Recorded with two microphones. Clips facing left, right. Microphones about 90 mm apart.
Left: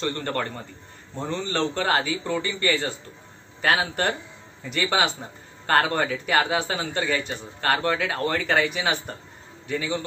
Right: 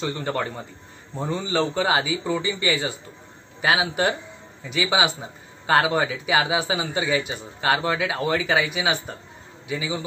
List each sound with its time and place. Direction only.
0.0 s a man's voice: 5° right (ahead or behind)